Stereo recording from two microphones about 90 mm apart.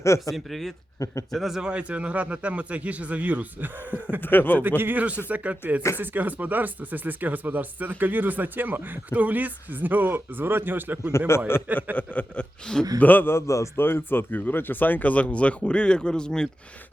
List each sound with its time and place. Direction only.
0.3 s speech: centre (ahead or behind)
0.9 s speech: 35° left (ahead or behind)
1.3 s a man's voice: centre (ahead or behind); by 4.2 s 20° right (ahead or behind)
4.2 s a man's voice: 20° left (ahead or behind)
4.8 s a man's voice: 20° right (ahead or behind)
11.5 s a man's voice: 25° left (ahead or behind)
11.9 s a sound: 15° left (ahead or behind)
13.0 s a man's voice: 20° left (ahead or behind)